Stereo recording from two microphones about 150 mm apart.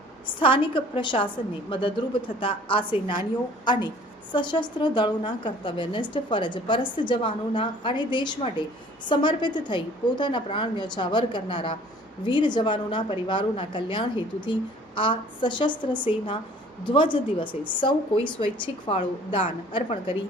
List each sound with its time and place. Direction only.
0.3 s a woman's voice: 35° left (ahead or behind)